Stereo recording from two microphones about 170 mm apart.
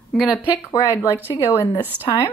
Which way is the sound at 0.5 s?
20° left (ahead or behind).